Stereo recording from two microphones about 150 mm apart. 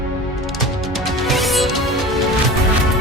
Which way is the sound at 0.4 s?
Centre (ahead or behind).